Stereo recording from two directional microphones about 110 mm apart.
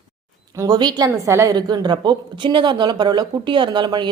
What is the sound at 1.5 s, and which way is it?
A woman's voice, 40° right (ahead or behind).